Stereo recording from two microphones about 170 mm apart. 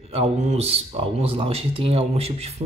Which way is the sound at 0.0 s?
35° right (ahead or behind).